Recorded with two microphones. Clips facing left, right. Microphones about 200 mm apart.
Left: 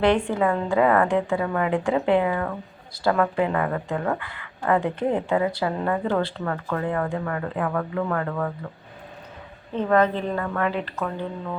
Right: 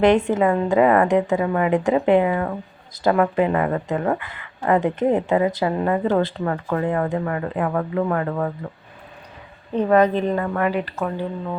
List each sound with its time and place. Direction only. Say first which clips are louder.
0.0 s a woman's voice: right 4 dB; 20° right (ahead or behind)
9.7 s a woman's voice: right 4 dB; 15° right (ahead or behind)